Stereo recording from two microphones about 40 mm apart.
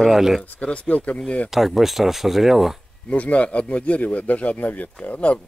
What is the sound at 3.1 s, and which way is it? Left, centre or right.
A man's voice, left.